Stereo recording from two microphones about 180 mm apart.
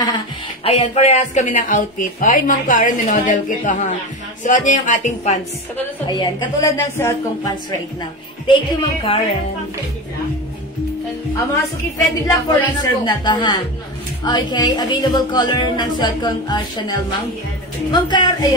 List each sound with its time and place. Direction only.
0.7 s a woman's voice: 35° left (ahead or behind)
6.0 s a woman's voice: 25° left (ahead or behind)
8.5 s a woman's voice: 30° left (ahead or behind)
11.3 s a woman's voice: 20° left (ahead or behind)
17.9 s a woman's voice: 25° left (ahead or behind)